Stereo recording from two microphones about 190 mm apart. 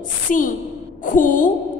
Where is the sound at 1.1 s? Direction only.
45° left (ahead or behind).